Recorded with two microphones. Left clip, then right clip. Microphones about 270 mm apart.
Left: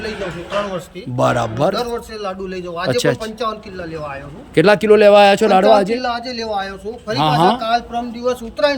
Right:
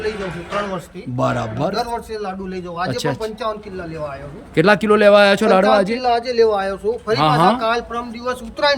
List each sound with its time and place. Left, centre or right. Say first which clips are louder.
1.1 s a man's voice: left 4 dB; centre
4.5 s a man's voice: left 3 dB; centre
7.2 s a man's voice: left 2 dB; centre